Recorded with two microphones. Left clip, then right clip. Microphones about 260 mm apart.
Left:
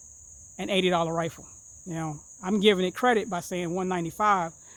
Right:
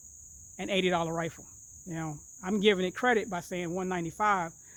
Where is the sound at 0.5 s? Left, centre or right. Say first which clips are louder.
Left 4 dB; left.